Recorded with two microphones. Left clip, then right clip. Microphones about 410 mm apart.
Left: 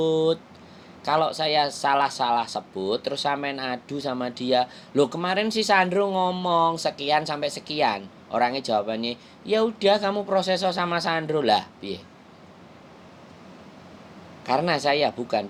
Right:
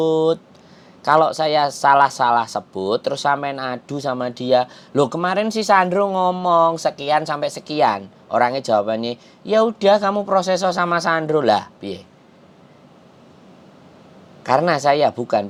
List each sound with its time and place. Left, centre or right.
0.0 s speech: right
1.0 s speech: right
14.4 s speech: right